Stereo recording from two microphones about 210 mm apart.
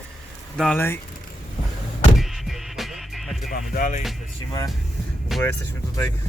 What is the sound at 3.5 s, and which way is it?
Speech, 40° left (ahead or behind).